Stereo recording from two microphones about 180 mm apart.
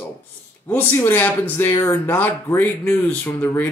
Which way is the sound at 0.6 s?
15° left (ahead or behind).